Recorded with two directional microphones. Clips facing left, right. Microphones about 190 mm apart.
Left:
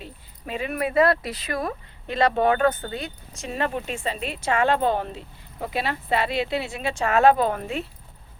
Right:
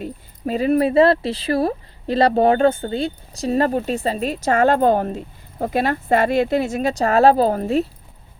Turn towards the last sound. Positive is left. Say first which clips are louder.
# right 7 dB
turn(degrees=-35)  # may be behind; listen again after turning